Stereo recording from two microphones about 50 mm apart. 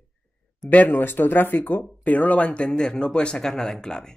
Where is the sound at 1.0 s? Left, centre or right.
Left; by 4.1 s centre.